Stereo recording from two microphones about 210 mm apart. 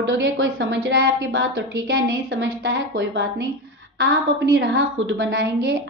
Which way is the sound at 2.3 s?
60° right (ahead or behind).